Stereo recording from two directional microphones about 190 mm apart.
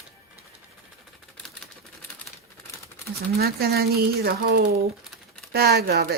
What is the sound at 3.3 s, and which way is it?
Speech, 55° right (ahead or behind).